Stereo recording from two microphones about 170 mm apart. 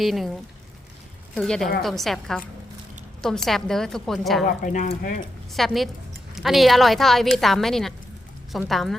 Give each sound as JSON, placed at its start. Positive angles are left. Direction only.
{"t": 0.0, "sound": "a woman's voice", "side_deg": 0}
{"t": 1.4, "sound": "a woman's voice", "side_deg": 5}
{"t": 4.4, "sound": "speech", "side_deg": 50}
{"t": 5.5, "sound": "a woman's voice", "side_deg": 0}